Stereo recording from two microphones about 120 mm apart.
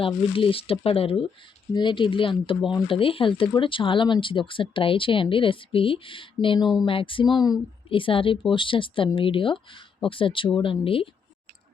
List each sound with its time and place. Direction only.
0.0 s speech: 50° left (ahead or behind); by 7.6 s 35° left (ahead or behind)
7.9 s speech: 45° left (ahead or behind)